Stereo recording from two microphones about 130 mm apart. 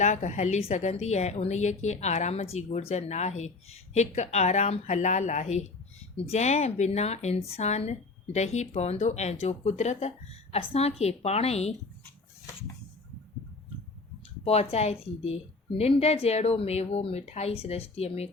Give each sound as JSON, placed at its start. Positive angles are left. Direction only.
{"t": 0.0, "sound": "a woman's voice", "side_deg": 65}
{"t": 10.5, "sound": "speech", "side_deg": 50}
{"t": 14.4, "sound": "speech", "side_deg": 50}